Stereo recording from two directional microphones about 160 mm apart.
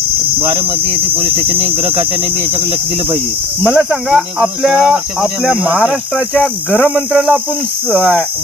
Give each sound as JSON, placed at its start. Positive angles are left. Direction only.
{"t": 0.3, "sound": "speech", "side_deg": -35}
{"t": 3.6, "sound": "speech", "side_deg": 0}